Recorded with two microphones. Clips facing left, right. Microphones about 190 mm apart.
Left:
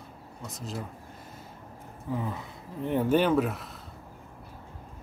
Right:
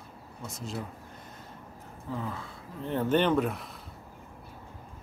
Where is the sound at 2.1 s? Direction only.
15° left (ahead or behind).